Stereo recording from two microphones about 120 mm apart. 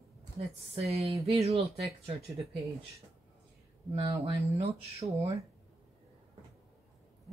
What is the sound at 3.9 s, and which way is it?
Speech, 55° right (ahead or behind).